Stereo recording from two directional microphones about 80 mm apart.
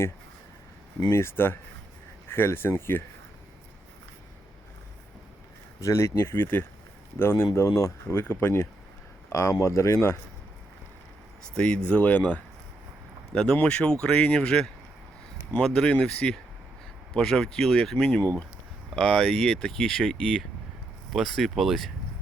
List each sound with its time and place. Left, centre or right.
1.1 s speech: left
5.8 s speech: left
9.3 s speech: left
11.5 s speech: centre